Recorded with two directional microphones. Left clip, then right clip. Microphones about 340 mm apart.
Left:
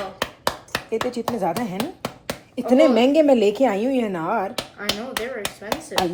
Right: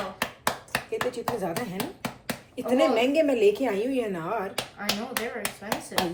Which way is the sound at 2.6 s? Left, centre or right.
Left.